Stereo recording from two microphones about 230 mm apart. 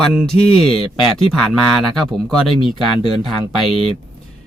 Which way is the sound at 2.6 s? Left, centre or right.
Left.